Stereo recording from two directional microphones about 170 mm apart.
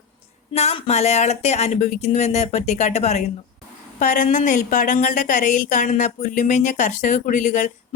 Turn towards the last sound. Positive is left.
turn(degrees=45)  # may be behind; listen again after turning